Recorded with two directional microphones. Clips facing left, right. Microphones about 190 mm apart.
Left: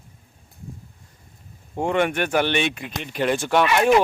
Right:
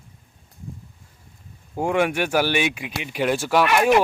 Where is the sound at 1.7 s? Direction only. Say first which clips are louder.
Even; 5° right (ahead or behind).